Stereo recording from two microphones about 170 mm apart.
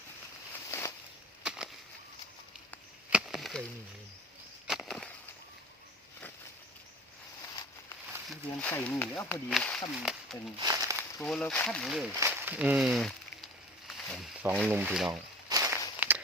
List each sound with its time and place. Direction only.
0.7 s a sound: 15° left (ahead or behind)
1.5 s a sound: 5° right (ahead or behind)
3.1 s chop: 5° right (ahead or behind)
4.6 s a sound: centre (ahead or behind)
8.3 s speech: 5° left (ahead or behind)
10.6 s speech: 20° right (ahead or behind)
11.2 s speech: 5° left (ahead or behind)
12.1 s speech: 15° right (ahead or behind)
13.8 s a sound: centre (ahead or behind)
14.4 s speech: 10° right (ahead or behind)
15.4 s walk: 20° right (ahead or behind)
16.0 s walk: 10° right (ahead or behind)